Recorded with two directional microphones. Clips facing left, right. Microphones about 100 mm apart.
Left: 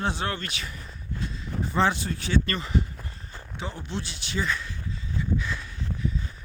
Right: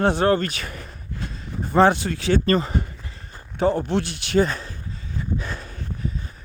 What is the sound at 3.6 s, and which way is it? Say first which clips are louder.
Speech: right 14 dB; 50° right (ahead or behind).